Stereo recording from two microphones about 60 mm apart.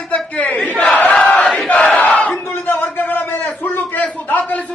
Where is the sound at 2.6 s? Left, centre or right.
Left.